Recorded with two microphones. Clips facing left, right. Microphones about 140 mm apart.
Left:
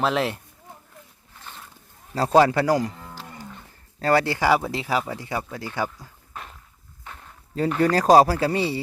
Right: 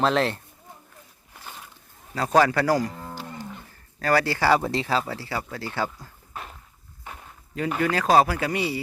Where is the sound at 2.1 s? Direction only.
30° left (ahead or behind).